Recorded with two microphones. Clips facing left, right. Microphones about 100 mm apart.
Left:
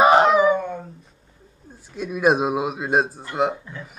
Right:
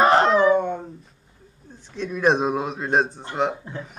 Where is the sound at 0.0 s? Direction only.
10° left (ahead or behind).